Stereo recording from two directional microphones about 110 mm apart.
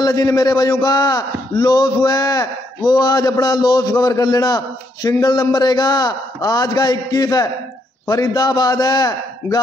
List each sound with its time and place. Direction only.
0.0 s a man's voice: 35° left (ahead or behind)